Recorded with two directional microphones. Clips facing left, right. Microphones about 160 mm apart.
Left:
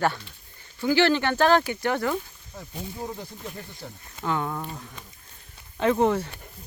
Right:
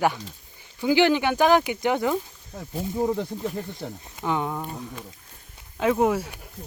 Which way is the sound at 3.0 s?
55° right (ahead or behind).